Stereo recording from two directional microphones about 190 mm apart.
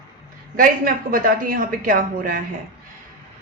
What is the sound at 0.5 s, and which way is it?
A woman's voice, 45° right (ahead or behind).